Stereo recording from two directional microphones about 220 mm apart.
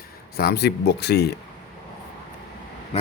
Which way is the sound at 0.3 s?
45° left (ahead or behind).